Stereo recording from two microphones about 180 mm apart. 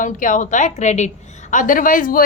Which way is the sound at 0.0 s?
45° left (ahead or behind).